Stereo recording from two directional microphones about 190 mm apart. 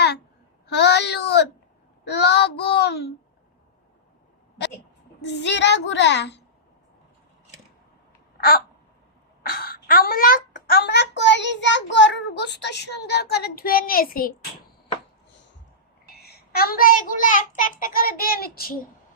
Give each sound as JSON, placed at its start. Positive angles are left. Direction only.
{"t": 0.7, "sound": "a sound", "side_deg": 60}
{"t": 2.0, "sound": "a child's voice", "side_deg": 60}
{"t": 5.2, "sound": "a child's voice", "side_deg": 65}
{"t": 8.4, "sound": "babbling", "side_deg": 55}
{"t": 9.4, "sound": "a child's voice", "side_deg": 50}
{"t": 16.2, "sound": "a child's voice", "side_deg": 55}